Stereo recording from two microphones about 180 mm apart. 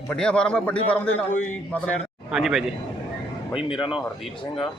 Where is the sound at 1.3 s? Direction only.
45° left (ahead or behind).